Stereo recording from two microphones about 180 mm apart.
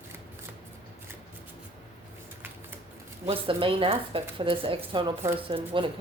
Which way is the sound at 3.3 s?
30° right (ahead or behind).